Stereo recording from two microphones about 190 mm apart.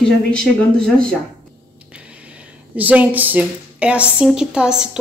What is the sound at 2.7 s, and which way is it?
A woman's voice, 10° right (ahead or behind).